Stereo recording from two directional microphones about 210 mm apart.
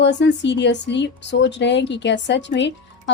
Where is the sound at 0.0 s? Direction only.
55° left (ahead or behind).